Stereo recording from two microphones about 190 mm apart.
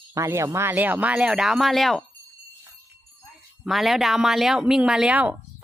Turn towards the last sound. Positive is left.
turn(degrees=-5)  # may be behind; listen again after turning